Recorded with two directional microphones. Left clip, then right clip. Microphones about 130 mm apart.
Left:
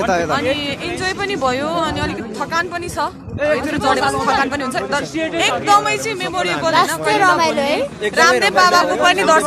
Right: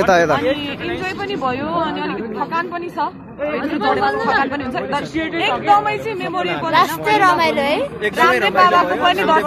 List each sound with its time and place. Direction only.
0.0 s a man's voice: 20° right (ahead or behind)
1.0 s speech: 40° left (ahead or behind)
6.7 s a woman's voice: 15° left (ahead or behind)
8.2 s speech: 40° left (ahead or behind)